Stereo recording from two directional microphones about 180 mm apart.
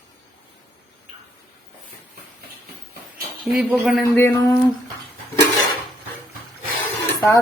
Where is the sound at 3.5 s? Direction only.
Centre (ahead or behind).